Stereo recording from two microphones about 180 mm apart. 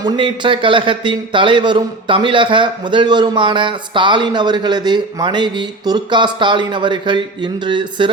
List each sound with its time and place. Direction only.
0.0 s speech: 30° right (ahead or behind)